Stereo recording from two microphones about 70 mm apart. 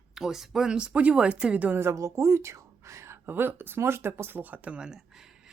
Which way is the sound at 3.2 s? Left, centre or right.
Right.